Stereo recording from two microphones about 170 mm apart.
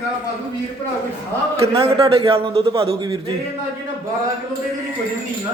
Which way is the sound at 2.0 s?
30° right (ahead or behind).